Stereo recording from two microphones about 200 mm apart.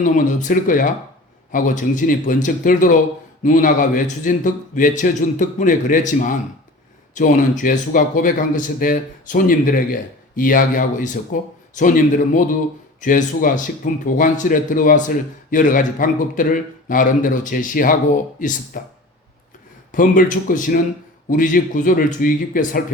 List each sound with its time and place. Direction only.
0.0 s speech: 40° left (ahead or behind)
19.9 s speech: 40° left (ahead or behind)